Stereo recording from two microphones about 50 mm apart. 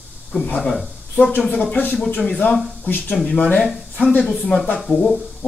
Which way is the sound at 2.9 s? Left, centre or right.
Left.